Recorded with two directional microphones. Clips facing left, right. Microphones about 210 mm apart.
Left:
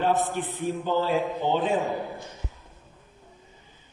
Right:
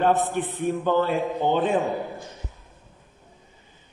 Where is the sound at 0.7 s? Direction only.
60° right (ahead or behind).